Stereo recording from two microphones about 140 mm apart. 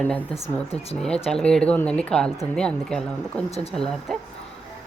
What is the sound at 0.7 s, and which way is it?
Speech, 45° left (ahead or behind).